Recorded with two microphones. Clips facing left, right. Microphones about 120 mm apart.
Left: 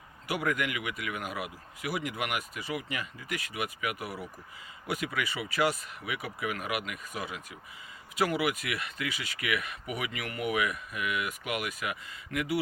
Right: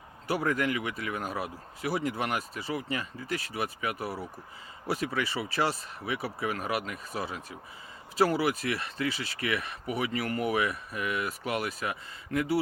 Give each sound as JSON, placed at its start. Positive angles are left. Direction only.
{"t": 0.3, "sound": "speech", "side_deg": -30}